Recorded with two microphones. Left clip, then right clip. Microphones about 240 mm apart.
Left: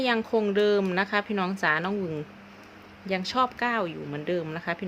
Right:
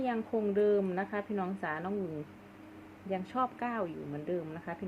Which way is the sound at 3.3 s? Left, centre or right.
Centre.